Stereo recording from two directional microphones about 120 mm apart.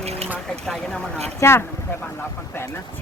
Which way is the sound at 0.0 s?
60° right (ahead or behind).